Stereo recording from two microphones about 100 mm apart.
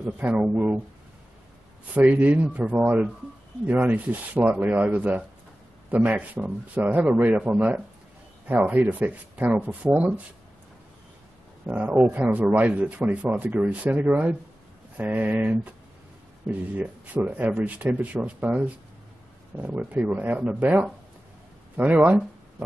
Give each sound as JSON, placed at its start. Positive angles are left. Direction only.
{"t": 0.2, "sound": "speech", "side_deg": -15}
{"t": 2.0, "sound": "speech", "side_deg": -15}
{"t": 11.6, "sound": "speech", "side_deg": -15}